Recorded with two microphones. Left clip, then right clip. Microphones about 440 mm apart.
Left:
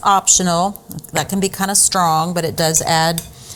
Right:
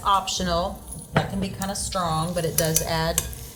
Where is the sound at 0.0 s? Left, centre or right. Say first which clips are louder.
Left 8 dB; left.